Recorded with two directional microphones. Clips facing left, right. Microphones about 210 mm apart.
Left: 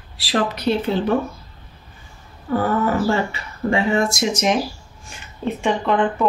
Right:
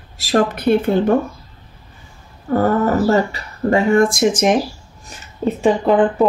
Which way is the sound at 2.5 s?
45° right (ahead or behind).